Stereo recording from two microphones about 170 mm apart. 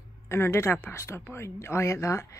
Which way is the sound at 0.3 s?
15° left (ahead or behind).